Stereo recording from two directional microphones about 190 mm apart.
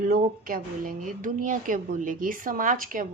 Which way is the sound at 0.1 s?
50° right (ahead or behind).